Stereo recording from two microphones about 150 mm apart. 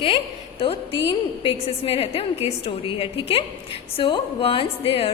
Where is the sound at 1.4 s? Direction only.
40° left (ahead or behind).